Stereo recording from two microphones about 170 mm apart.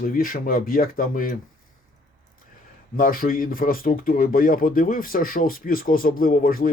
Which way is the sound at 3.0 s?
55° left (ahead or behind).